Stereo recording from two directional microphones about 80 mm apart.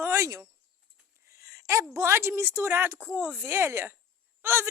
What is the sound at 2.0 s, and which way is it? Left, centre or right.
A woman's voice, right.